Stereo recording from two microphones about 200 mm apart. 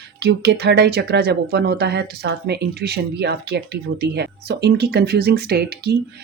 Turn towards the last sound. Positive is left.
turn(degrees=-50)  # may be behind; listen again after turning